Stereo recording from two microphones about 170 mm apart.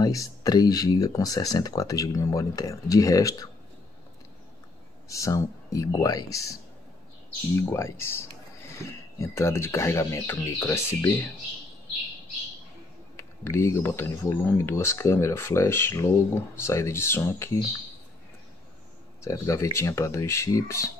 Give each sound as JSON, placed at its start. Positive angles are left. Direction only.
{"t": 0.0, "sound": "speech", "side_deg": 20}
{"t": 5.0, "sound": "speech", "side_deg": 20}
{"t": 7.5, "sound": "speech", "side_deg": 15}
{"t": 13.1, "sound": "speech", "side_deg": 15}
{"t": 19.2, "sound": "speech", "side_deg": 15}